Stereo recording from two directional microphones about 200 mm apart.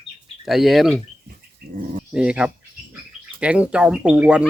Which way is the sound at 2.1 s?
5° right (ahead or behind).